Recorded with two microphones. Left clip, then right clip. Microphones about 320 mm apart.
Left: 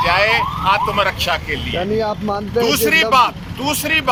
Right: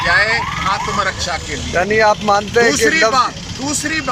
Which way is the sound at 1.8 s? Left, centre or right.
Right.